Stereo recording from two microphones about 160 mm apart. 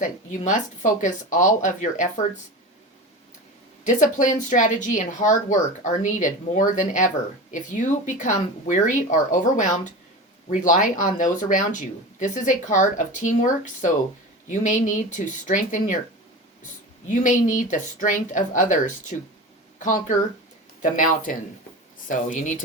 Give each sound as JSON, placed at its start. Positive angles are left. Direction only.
{"t": 0.0, "sound": "speech", "side_deg": 50}
{"t": 3.8, "sound": "speech", "side_deg": 55}
{"t": 17.1, "sound": "speech", "side_deg": 55}